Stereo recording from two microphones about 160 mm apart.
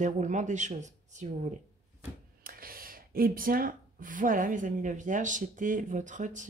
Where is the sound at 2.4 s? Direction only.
65° right (ahead or behind).